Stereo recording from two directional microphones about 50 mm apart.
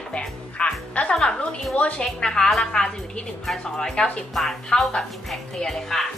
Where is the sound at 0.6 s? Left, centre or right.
Left.